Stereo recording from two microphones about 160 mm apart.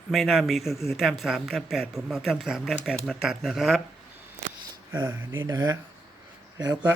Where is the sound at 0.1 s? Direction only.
Centre (ahead or behind).